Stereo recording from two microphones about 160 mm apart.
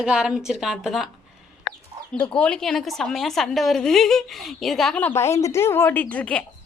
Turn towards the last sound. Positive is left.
turn(degrees=10)  # may be behind; listen again after turning